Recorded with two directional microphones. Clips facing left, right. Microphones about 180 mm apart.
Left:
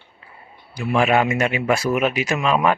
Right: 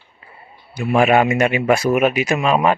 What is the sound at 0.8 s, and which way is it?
Speech, 50° right (ahead or behind).